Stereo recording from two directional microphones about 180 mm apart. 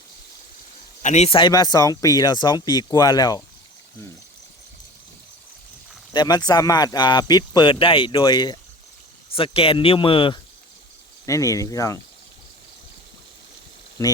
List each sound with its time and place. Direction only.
1.0 s speech: 40° left (ahead or behind); by 3.4 s 20° left (ahead or behind)
6.1 s speech: 20° left (ahead or behind)
11.3 s speech: 20° left (ahead or behind)
14.0 s speech: 15° left (ahead or behind)